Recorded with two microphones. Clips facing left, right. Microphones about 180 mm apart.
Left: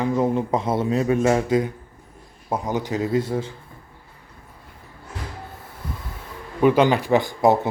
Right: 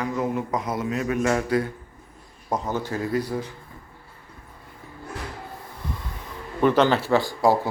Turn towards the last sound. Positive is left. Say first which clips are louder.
# left 2 dB
turn(degrees=20)  # may be behind; listen again after turning